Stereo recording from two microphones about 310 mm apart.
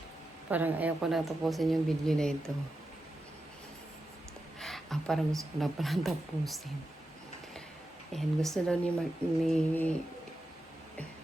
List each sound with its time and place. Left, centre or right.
0.5 s a woman's voice: centre
4.6 s a woman's voice: centre
8.1 s a woman's voice: centre